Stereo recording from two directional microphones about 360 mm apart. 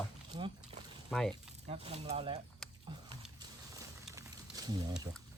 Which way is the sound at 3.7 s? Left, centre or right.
Centre.